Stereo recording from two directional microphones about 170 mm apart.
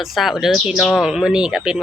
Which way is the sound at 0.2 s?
Centre (ahead or behind).